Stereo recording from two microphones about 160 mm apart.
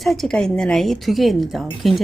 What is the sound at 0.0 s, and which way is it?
Speech, centre (ahead or behind).